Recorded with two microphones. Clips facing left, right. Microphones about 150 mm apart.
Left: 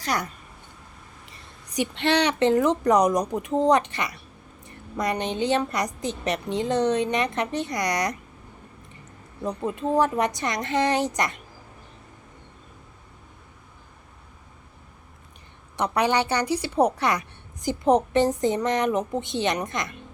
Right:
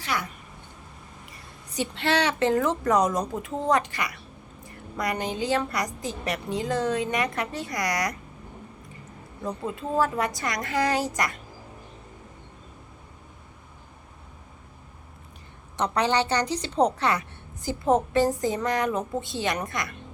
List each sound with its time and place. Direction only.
0.0 s speech: 40° left (ahead or behind)
1.7 s a woman's voice: 15° left (ahead or behind)
9.4 s a woman's voice: 20° left (ahead or behind)
15.8 s a woman's voice: 10° left (ahead or behind)